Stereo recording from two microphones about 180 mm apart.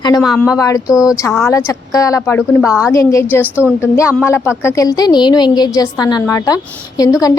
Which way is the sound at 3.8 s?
15° left (ahead or behind).